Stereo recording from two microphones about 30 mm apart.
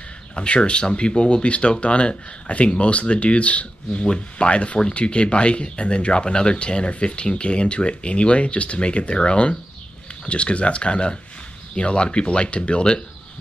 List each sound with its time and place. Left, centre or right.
0.4 s speech: left